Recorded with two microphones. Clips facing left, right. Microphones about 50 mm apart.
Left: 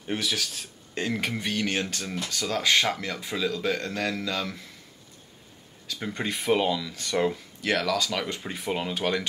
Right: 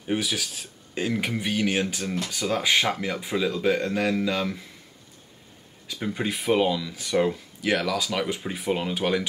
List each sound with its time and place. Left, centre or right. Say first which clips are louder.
0.0 s speech: right 2 dB; centre
5.9 s speech: right 3 dB; centre